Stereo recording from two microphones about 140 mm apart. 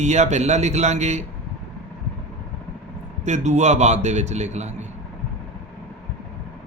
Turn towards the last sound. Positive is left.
turn(degrees=-55)  # may be behind; listen again after turning